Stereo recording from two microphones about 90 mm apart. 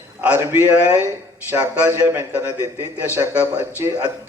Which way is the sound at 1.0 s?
20° right (ahead or behind).